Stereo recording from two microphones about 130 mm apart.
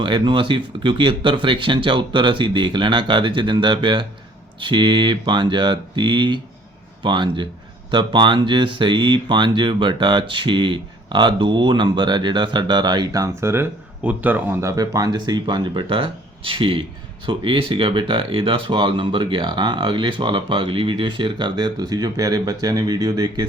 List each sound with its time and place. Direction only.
0.0 s speech: 40° right (ahead or behind)